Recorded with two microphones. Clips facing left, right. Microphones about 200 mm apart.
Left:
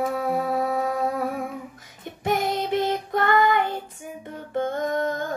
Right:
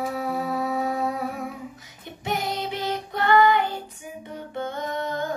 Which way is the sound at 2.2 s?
50° left (ahead or behind).